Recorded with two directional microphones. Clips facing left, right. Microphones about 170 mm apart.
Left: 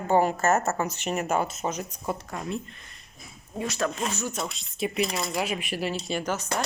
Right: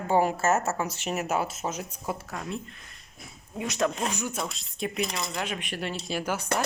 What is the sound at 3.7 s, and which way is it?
Speech, 15° right (ahead or behind).